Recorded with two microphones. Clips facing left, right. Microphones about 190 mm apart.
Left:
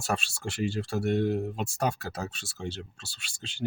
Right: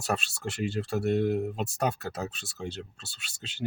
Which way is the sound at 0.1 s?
Centre (ahead or behind).